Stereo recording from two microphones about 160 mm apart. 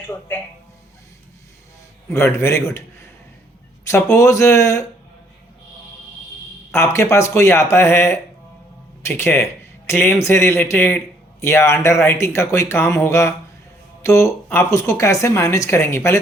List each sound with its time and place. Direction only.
0.1 s speech: 15° left (ahead or behind)
2.0 s speech: 15° left (ahead or behind)
6.7 s speech: 15° left (ahead or behind)